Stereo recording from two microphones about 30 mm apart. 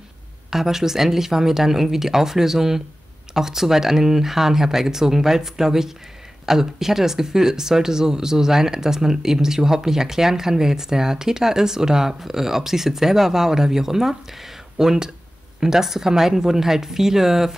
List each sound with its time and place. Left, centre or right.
0.5 s speech: centre